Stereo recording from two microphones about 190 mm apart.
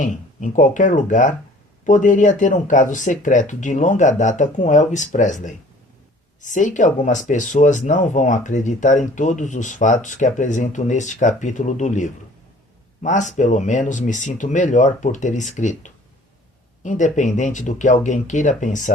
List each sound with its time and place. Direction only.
0.0 s speech: 40° left (ahead or behind)